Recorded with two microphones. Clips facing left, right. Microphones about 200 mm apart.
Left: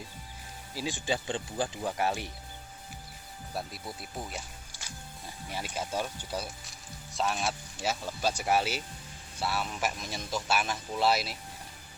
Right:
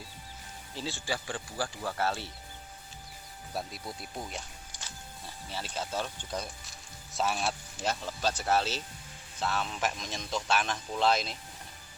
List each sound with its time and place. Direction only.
0.7 s speech: 10° left (ahead or behind)
3.5 s speech: centre (ahead or behind)